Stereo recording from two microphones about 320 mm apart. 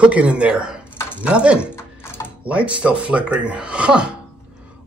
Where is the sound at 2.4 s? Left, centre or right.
Centre.